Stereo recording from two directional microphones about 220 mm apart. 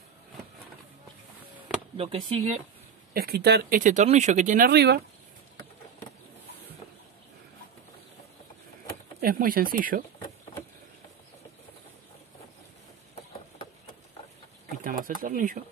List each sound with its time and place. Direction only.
2.0 s speech: 25° right (ahead or behind)
3.1 s speech: 45° right (ahead or behind)
9.2 s speech: 40° right (ahead or behind)
14.8 s a sound: 40° right (ahead or behind)
15.2 s speech: 40° right (ahead or behind)